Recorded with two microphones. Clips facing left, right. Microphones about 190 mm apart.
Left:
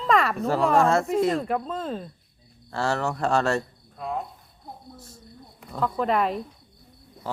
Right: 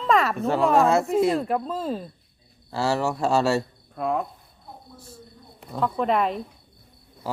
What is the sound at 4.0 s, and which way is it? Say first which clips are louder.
Speech: right 5 dB; 60° right (ahead or behind).